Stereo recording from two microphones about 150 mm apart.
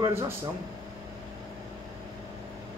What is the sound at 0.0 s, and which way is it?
Speech, 20° right (ahead or behind).